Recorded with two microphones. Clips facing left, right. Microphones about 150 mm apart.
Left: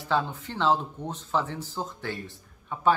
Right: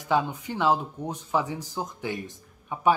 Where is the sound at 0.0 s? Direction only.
15° right (ahead or behind).